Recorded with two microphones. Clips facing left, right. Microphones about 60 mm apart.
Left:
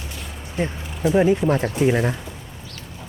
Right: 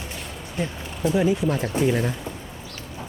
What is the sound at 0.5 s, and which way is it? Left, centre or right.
Speech, left.